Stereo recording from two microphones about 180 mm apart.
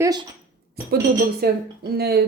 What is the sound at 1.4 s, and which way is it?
Speech, 60° right (ahead or behind).